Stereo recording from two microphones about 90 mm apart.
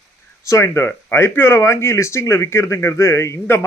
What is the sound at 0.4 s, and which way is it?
Speech, 35° left (ahead or behind).